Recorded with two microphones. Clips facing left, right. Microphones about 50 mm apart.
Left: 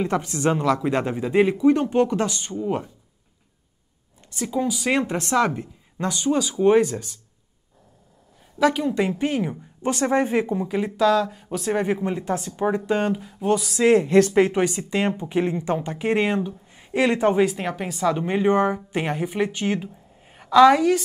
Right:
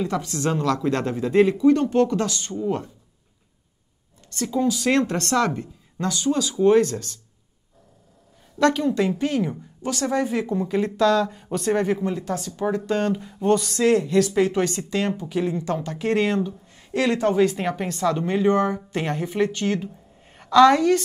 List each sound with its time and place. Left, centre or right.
0.0 s speech: left
4.3 s speech: centre
8.5 s speech: centre; by 10.5 s left
10.5 s speech: centre
11.8 s speech: centre
13.2 s a sound: centre
14.0 s speech: left
14.5 s speech: centre
17.5 s a woman's voice: centre